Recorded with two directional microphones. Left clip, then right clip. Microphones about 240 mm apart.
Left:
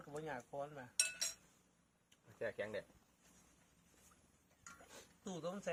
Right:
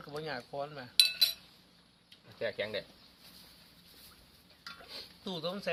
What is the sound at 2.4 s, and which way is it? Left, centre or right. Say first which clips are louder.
Speech: right 8 dB; centre.